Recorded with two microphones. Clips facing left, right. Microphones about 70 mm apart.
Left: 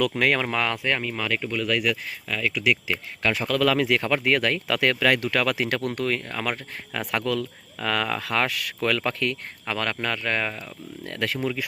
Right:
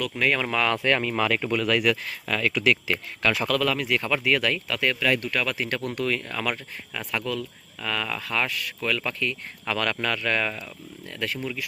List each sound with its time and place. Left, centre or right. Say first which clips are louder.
0.5 s speech: right 2 dB; left
0.8 s speech: right 3 dB; centre
1.1 s speech: right 3 dB; centre
3.2 s speech: right 1 dB; left
3.7 s speech: left 4 dB; left
4.1 s speech: left 1 dB; left
4.7 s speech: left 4 dB; left
5.8 s speech: left 1 dB; left
7.1 s speech: left 3 dB; left
9.6 s speech: right 1 dB; left
11.0 s speech: left 3 dB; left